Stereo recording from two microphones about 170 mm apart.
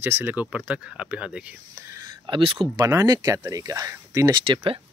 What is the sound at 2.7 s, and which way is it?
Speech, 20° right (ahead or behind).